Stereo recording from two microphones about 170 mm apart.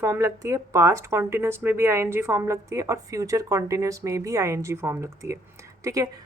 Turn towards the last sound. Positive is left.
turn(degrees=-20)  # may be behind; listen again after turning